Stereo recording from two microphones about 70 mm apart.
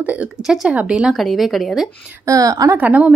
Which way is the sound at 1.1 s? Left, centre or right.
Centre.